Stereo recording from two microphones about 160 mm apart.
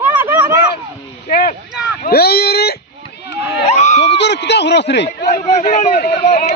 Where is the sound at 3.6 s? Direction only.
45° left (ahead or behind).